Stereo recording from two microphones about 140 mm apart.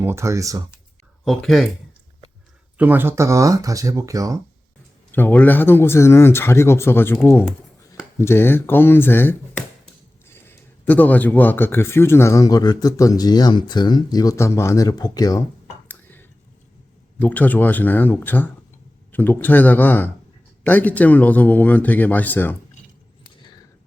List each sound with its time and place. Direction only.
0.0 s speech: 20° right (ahead or behind)
1.2 s speech: centre (ahead or behind)
2.7 s speech: 15° right (ahead or behind)
5.1 s a man's voice: 15° left (ahead or behind)
15.9 s a sound: 15° left (ahead or behind)
17.2 s speech: 10° left (ahead or behind)